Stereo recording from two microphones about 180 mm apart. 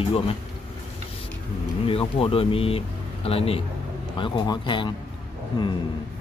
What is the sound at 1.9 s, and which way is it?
Speech, 30° left (ahead or behind).